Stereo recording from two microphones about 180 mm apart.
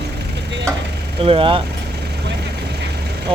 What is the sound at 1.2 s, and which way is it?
Speech, 30° right (ahead or behind).